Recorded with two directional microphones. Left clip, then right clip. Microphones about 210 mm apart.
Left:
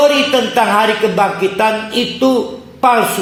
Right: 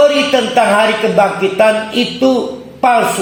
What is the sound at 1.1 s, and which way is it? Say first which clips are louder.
A man's voice: right 3 dB; 40° left (ahead or behind).